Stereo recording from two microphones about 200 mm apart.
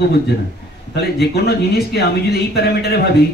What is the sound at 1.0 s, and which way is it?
Speech, 55° left (ahead or behind).